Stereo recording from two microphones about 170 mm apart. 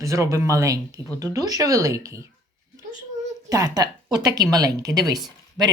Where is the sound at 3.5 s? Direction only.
20° right (ahead or behind).